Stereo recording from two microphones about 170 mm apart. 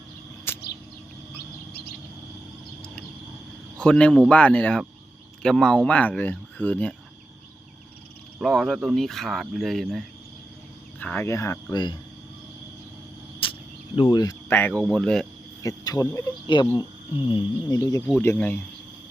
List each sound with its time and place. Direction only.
0.5 s a sound: 10° left (ahead or behind)
1.4 s bird: 70° left (ahead or behind)
3.8 s speech: 5° left (ahead or behind)
8.4 s speech: centre (ahead or behind)
11.0 s speech: 10° left (ahead or behind); by 11.9 s 25° left (ahead or behind)
13.4 s speech: 30° left (ahead or behind); by 15.3 s 5° left (ahead or behind)
15.6 s speech: 20° left (ahead or behind)
18.0 s speech: 10° left (ahead or behind)